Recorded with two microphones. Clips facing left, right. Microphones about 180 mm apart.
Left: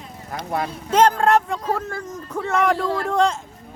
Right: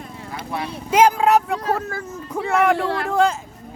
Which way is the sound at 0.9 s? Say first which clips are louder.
Right 1 dB; 10° right (ahead or behind).